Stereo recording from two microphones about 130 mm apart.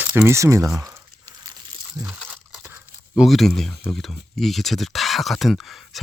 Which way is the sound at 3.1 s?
Centre (ahead or behind).